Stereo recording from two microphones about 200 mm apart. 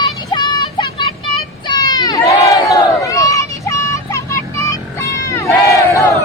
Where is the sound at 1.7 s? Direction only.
20° left (ahead or behind).